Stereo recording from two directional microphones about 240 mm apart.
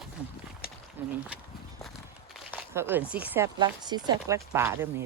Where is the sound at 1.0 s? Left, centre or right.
Centre.